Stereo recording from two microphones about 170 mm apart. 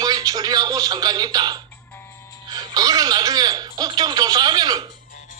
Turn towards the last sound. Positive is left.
turn(degrees=-25)  # may be behind; listen again after turning